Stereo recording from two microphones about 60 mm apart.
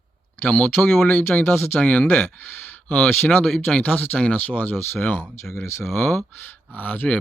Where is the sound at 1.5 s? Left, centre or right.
Left.